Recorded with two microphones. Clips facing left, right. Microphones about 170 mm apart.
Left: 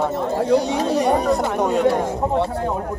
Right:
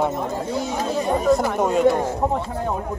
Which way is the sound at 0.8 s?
75° left (ahead or behind).